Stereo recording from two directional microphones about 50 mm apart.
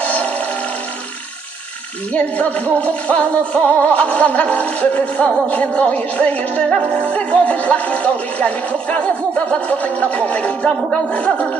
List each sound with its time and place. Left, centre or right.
0.0 s music: left
2.1 s music: left